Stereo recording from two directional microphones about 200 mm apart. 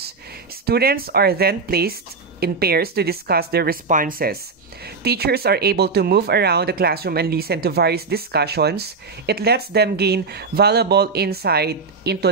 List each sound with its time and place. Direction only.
0.7 s speech: 50° right (ahead or behind)